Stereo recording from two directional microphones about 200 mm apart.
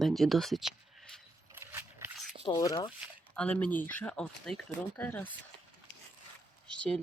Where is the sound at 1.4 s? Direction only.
15° right (ahead or behind).